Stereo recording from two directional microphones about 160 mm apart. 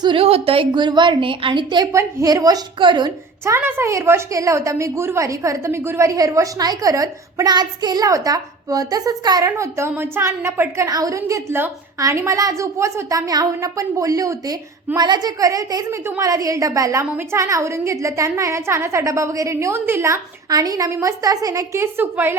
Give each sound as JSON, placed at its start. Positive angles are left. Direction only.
{"t": 0.0, "sound": "a woman's voice", "side_deg": -35}
{"t": 3.4, "sound": "a woman's voice", "side_deg": -15}